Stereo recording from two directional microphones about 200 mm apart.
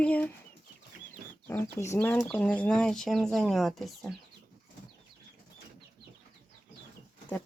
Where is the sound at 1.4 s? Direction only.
10° left (ahead or behind).